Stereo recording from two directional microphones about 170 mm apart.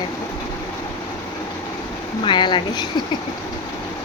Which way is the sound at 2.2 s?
25° left (ahead or behind).